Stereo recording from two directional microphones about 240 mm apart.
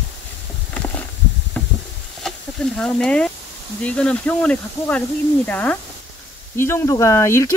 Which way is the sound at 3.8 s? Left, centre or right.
Centre.